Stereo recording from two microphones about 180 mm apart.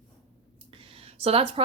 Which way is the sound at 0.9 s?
35° right (ahead or behind).